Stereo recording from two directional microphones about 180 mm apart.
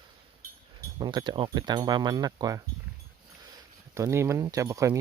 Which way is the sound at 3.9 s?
15° right (ahead or behind).